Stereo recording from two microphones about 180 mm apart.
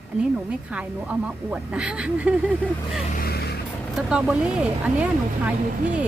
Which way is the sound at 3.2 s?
60° left (ahead or behind).